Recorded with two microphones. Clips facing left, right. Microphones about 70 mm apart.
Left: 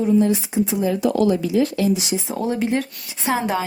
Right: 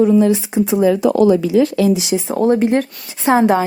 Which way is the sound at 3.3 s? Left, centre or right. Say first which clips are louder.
Right 9 dB; right.